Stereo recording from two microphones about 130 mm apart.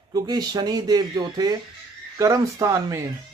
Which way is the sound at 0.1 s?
30° right (ahead or behind).